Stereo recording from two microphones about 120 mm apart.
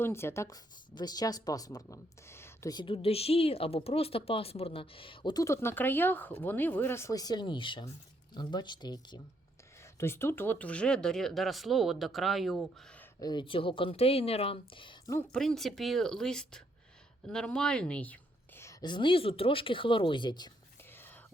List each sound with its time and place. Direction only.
0.0 s speech: 20° left (ahead or behind)
2.7 s speech: 45° left (ahead or behind)
5.3 s speech: 25° left (ahead or behind)
9.8 s speech: 20° left (ahead or behind); by 13.0 s 5° left (ahead or behind)
13.1 s speech: 35° left (ahead or behind)
13.4 s speech: 45° left (ahead or behind)
15.3 s a woman's voice: 5° left (ahead or behind)
18.6 s a sound: 25° left (ahead or behind)
18.9 s speech: 40° left (ahead or behind)
20.9 s whispering: 20° left (ahead or behind)